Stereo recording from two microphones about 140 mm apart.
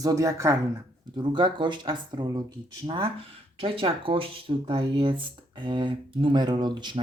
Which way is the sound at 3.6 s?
40° right (ahead or behind).